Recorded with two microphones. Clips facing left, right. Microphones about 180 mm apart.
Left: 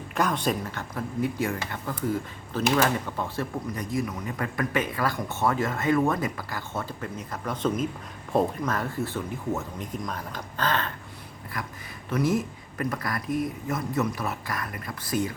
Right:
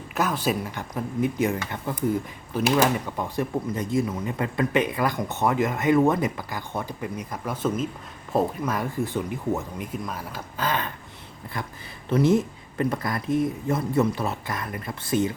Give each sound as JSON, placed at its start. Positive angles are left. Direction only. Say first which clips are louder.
{"t": 0.1, "sound": "speech", "louder": "right 1 dB", "side_deg": -5}
{"t": 11.5, "sound": "speech", "louder": "right 2 dB", "side_deg": -25}